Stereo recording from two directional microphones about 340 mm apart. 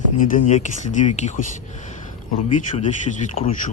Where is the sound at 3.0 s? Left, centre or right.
Left.